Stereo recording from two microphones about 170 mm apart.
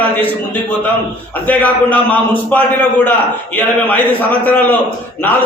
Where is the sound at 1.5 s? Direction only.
10° left (ahead or behind).